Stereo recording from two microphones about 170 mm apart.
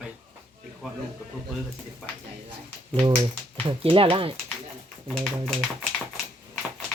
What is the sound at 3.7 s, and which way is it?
Speech, 30° right (ahead or behind).